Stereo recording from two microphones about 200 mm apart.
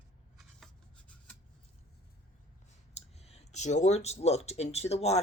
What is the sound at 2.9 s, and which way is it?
Speech, 30° left (ahead or behind).